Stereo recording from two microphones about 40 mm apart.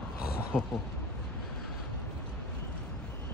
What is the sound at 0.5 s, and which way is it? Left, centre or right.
Speech, right.